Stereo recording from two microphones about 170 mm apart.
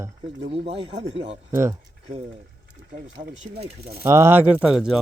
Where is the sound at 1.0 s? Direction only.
35° right (ahead or behind).